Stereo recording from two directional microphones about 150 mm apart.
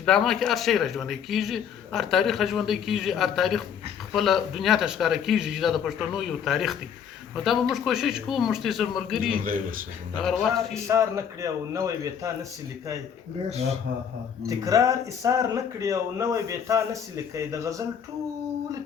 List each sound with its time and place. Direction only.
0.0 s speech: 5° left (ahead or behind)
9.2 s a man's voice: 70° right (ahead or behind)
10.8 s speech: 20° right (ahead or behind)
14.4 s speech: 20° right (ahead or behind)